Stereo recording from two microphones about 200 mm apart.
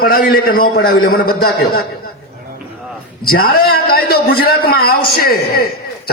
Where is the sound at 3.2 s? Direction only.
50° left (ahead or behind).